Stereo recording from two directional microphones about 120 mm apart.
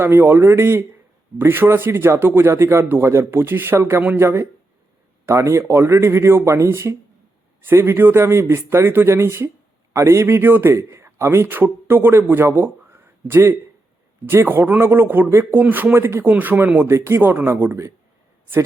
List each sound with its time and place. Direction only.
0.0 s a man's voice: 20° right (ahead or behind)